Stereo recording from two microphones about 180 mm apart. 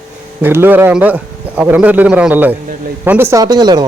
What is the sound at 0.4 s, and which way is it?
Speech, 10° right (ahead or behind).